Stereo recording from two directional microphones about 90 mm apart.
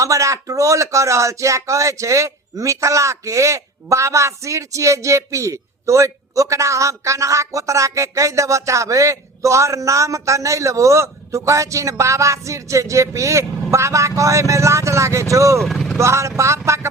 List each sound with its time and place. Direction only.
0.0 s speech: 35° right (ahead or behind)
15.5 s speech: 5° left (ahead or behind)
16.0 s speech: 35° right (ahead or behind)